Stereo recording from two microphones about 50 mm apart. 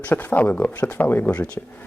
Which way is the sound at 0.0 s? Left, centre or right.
Left.